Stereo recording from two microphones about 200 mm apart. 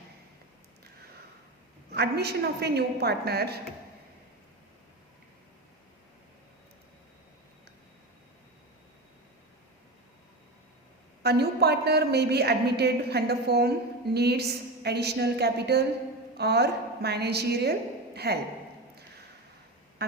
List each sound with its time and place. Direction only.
1.9 s a woman's voice: 55° right (ahead or behind)
11.2 s a woman's voice: 55° right (ahead or behind)
20.0 s a woman's voice: 55° right (ahead or behind)